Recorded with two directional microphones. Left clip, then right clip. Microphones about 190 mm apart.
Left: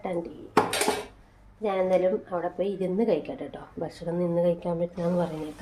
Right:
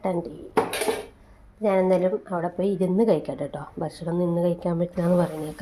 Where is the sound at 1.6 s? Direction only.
40° right (ahead or behind).